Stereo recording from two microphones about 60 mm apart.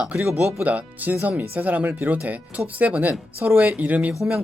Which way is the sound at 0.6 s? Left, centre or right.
Right.